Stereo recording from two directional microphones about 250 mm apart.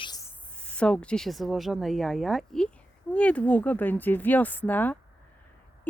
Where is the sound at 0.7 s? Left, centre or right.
Centre.